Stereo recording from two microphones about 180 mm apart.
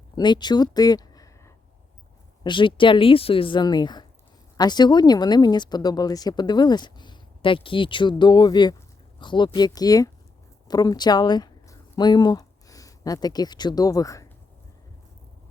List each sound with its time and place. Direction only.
0.2 s speech: 25° left (ahead or behind)